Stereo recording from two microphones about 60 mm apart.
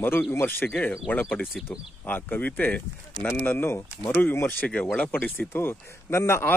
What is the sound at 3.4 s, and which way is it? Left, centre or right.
A man's voice, left.